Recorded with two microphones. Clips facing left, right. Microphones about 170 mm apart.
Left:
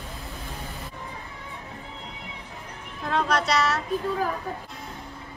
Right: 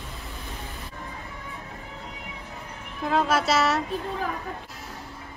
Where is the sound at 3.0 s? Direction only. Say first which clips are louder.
Right 2 dB; 5° right (ahead or behind).